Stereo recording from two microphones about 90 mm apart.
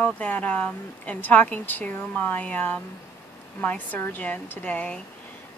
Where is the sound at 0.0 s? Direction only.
15° left (ahead or behind).